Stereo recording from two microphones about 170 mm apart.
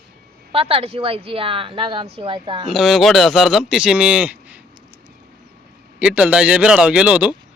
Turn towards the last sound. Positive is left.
turn(degrees=-5)  # may be behind; listen again after turning